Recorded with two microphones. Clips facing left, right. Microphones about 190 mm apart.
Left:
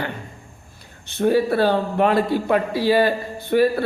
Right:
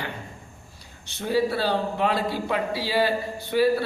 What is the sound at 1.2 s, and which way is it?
A man's voice, 55° left (ahead or behind).